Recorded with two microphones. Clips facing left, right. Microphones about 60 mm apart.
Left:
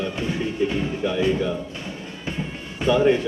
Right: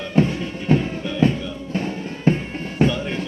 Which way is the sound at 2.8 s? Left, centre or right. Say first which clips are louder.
Right 2 dB; right.